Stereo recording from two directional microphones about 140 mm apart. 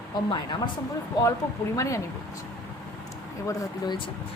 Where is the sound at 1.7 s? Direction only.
20° left (ahead or behind).